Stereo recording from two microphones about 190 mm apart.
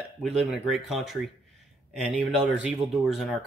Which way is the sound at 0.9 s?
Centre (ahead or behind).